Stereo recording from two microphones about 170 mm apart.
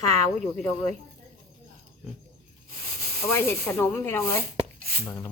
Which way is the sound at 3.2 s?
15° left (ahead or behind).